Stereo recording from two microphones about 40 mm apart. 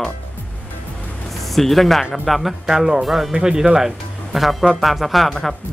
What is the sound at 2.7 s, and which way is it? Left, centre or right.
Speech, centre.